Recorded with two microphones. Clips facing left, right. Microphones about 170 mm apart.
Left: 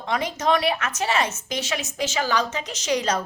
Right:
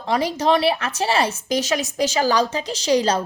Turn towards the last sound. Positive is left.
turn(degrees=-30)  # may be behind; listen again after turning